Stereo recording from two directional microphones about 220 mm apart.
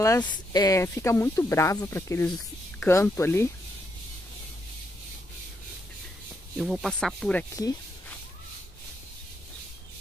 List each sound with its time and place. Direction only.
0.0 s speech: 15° left (ahead or behind)
6.5 s speech: centre (ahead or behind)